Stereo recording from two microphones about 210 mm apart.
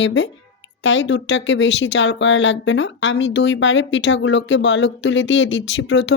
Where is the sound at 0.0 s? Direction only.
60° left (ahead or behind).